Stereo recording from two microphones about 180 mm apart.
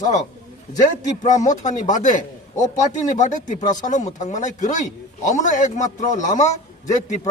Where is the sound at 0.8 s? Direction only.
40° left (ahead or behind).